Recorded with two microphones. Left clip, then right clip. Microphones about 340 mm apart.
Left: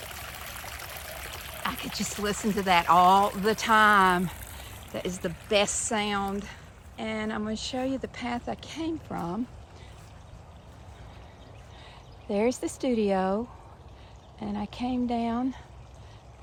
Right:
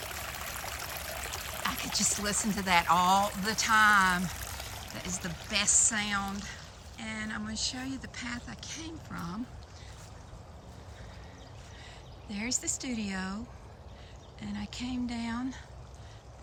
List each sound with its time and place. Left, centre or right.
0.0 s stream: centre
4.2 s a sound: centre
4.9 s speech: centre
12.3 s speech: centre
14.4 s speech: centre